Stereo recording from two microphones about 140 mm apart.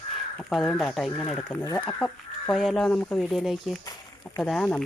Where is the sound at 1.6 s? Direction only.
20° left (ahead or behind).